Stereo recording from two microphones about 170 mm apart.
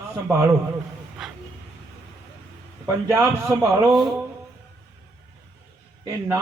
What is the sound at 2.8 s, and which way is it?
A man's voice, 20° right (ahead or behind).